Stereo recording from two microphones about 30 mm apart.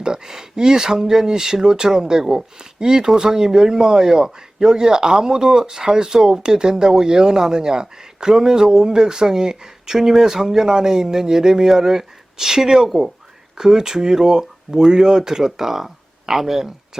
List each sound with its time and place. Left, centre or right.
0.0 s speech: right